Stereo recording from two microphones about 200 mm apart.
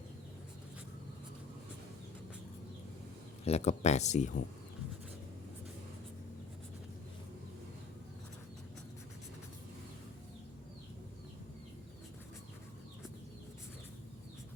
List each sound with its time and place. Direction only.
3.4 s speech: 35° left (ahead or behind)